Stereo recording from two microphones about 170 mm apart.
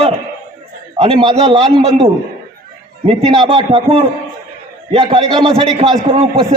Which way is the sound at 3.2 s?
30° right (ahead or behind).